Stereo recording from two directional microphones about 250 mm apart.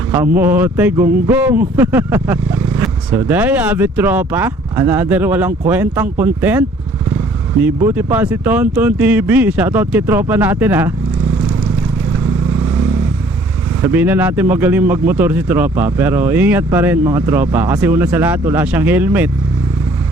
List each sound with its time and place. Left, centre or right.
0.1 s speech: centre
7.8 s speech: centre
13.8 s speech: centre